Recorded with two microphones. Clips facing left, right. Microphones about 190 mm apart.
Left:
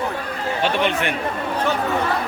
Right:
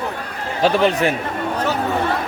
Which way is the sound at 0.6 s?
40° right (ahead or behind).